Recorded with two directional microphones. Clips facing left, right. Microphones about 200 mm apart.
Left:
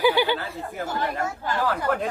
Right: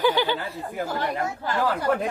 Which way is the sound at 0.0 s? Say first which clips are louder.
Left 1 dB; 10° left (ahead or behind).